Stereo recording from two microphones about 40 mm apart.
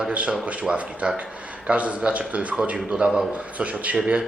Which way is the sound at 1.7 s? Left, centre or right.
Right.